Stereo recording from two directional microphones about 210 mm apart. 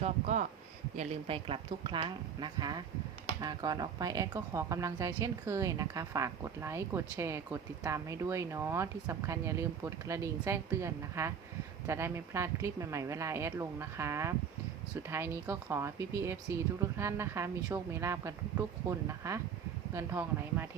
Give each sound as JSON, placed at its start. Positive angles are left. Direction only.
{"t": 0.0, "sound": "a woman's voice", "side_deg": -35}